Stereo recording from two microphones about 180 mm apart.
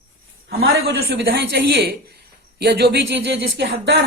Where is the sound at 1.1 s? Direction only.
65° right (ahead or behind).